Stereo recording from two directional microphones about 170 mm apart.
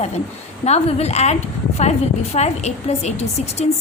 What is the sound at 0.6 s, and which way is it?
A woman's voice, 40° left (ahead or behind).